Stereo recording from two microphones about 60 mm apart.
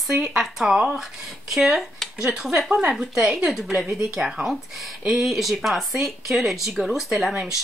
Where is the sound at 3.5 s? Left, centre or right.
Centre.